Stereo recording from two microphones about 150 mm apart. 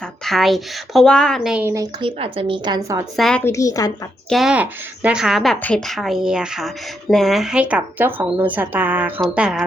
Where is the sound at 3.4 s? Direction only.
20° left (ahead or behind).